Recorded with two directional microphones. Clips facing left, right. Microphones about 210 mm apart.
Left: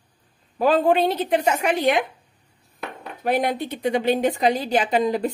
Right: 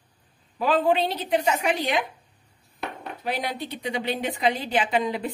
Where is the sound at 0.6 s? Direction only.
45° left (ahead or behind).